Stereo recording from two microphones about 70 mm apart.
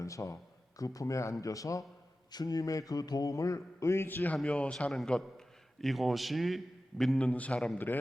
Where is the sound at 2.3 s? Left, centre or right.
Left.